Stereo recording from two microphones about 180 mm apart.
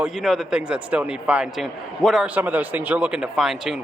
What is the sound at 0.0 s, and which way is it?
A man's voice, centre (ahead or behind).